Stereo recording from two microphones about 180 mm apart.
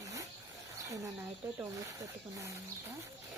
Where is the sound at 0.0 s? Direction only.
20° right (ahead or behind).